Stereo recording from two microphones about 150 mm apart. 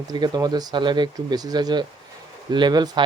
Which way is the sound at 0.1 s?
25° right (ahead or behind).